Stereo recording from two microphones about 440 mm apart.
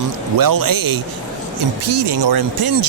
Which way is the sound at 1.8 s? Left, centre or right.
Right.